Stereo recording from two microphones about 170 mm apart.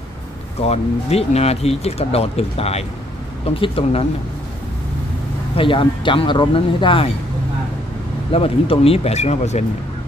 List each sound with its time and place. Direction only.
0.6 s speech: 35° left (ahead or behind)
5.6 s speech: 30° left (ahead or behind)
8.3 s speech: 35° left (ahead or behind)